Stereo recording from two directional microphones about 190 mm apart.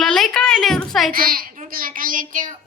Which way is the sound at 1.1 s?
50° right (ahead or behind).